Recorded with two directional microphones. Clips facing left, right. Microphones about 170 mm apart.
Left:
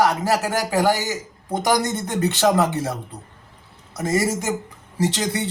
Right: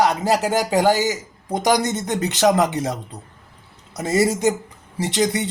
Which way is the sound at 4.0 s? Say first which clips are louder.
Right 2 dB; 20° right (ahead or behind).